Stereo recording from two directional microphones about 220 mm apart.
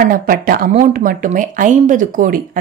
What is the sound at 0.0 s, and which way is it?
Speech, 40° right (ahead or behind).